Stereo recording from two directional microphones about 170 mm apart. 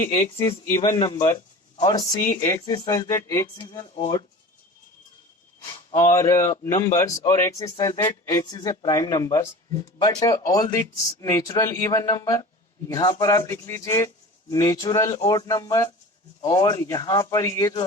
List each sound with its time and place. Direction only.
0.3 s speech: 30° left (ahead or behind)
6.1 s a man's voice: 15° left (ahead or behind)